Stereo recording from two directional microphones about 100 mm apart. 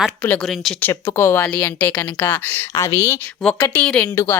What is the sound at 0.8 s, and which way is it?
Speech, 20° left (ahead or behind).